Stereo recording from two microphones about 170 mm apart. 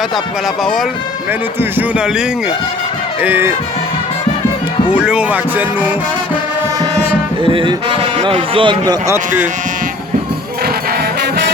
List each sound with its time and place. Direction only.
1.9 s music: 5° right (ahead or behind)
4.9 s music: 5° right (ahead or behind)
7.4 s speech: 30° right (ahead or behind)